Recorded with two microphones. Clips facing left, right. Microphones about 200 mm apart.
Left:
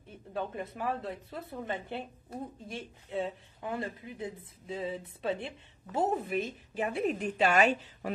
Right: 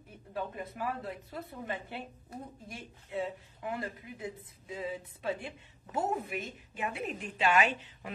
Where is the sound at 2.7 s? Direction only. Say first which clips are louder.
Left 3 dB; 25° left (ahead or behind).